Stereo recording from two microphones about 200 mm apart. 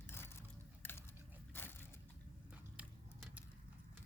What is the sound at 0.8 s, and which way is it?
Biting, 10° left (ahead or behind).